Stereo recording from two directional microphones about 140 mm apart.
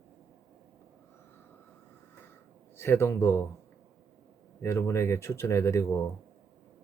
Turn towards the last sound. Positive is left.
turn(degrees=20)  # may be behind; listen again after turning